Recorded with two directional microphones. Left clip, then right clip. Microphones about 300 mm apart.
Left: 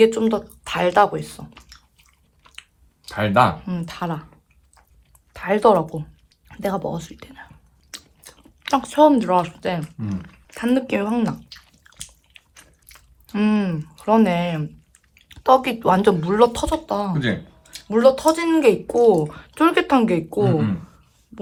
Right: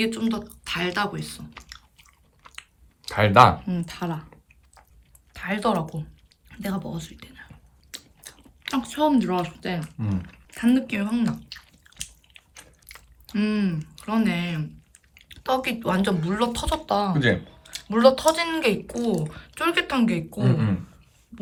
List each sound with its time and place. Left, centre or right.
0.0 s speech: centre
1.5 s chewing: right
3.6 s speech: centre
5.3 s speech: centre
6.5 s chewing: centre
8.6 s speech: centre
12.5 s a sound: right
13.3 s speech: centre
20.4 s speech: right